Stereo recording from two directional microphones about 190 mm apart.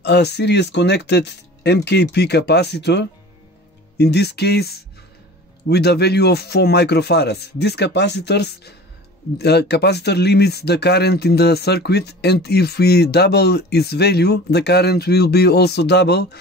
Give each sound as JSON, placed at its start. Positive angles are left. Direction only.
{"t": 0.0, "sound": "speech", "side_deg": 60}